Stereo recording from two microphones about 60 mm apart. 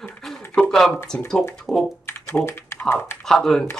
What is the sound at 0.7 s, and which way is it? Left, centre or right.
Speech, centre.